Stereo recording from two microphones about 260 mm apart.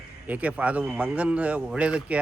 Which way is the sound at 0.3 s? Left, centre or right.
Centre.